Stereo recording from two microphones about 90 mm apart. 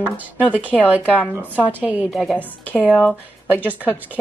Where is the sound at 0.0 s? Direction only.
15° right (ahead or behind).